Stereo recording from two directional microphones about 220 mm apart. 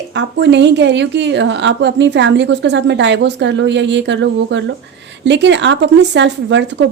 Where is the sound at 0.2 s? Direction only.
55° right (ahead or behind).